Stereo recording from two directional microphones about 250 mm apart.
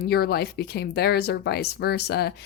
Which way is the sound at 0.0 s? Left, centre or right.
Left.